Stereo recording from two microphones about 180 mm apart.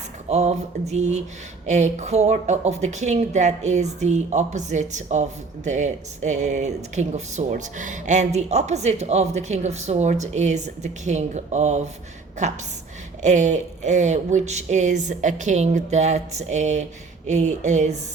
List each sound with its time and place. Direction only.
0.3 s speech: 40° right (ahead or behind)